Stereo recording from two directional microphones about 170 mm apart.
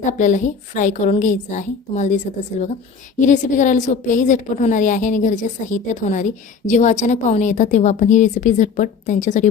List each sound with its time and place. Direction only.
0.0 s a woman's voice: 45° left (ahead or behind)